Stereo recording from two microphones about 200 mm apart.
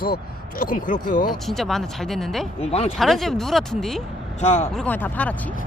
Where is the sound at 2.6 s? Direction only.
30° left (ahead or behind).